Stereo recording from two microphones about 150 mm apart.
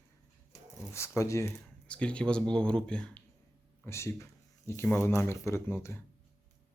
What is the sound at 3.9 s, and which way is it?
Speech, 20° left (ahead or behind).